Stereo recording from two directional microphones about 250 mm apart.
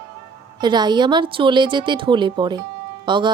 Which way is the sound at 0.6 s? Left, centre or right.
Centre.